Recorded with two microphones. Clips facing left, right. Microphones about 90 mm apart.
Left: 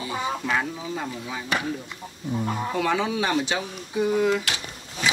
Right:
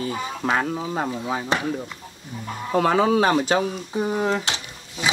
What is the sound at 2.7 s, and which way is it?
Speech, 45° right (ahead or behind).